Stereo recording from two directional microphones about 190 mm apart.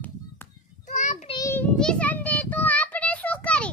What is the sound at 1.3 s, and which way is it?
Child singing, 15° left (ahead or behind).